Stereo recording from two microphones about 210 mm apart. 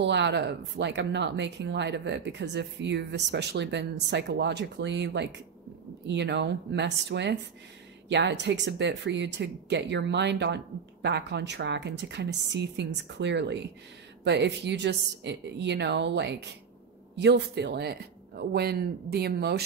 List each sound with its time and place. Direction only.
0.0 s speech: 55° right (ahead or behind)